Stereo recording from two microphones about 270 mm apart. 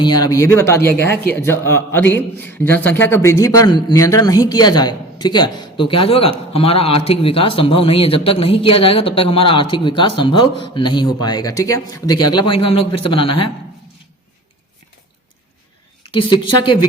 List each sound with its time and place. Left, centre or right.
0.0 s a man's voice: centre
16.0 s a man's voice: centre